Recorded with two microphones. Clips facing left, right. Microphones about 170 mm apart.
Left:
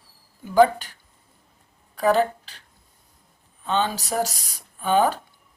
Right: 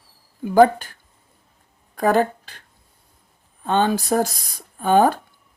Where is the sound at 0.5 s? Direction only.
50° right (ahead or behind).